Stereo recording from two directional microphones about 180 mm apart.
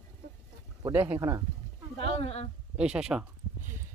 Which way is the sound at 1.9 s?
35° left (ahead or behind).